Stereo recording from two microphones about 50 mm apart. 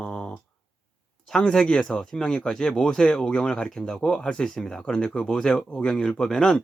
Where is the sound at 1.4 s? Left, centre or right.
Centre.